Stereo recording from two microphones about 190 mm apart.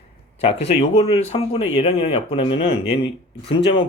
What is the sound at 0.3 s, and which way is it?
A man's voice, 30° left (ahead or behind).